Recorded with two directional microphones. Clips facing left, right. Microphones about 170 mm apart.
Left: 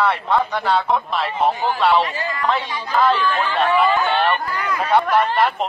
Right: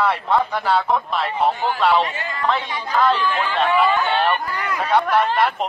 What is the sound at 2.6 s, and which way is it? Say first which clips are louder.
Speech: even; 25° right (ahead or behind).